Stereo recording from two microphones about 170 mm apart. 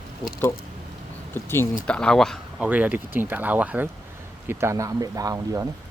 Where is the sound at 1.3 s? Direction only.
15° left (ahead or behind).